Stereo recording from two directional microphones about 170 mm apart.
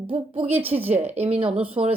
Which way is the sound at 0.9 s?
40° right (ahead or behind).